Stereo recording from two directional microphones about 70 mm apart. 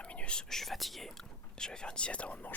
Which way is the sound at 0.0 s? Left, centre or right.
Centre.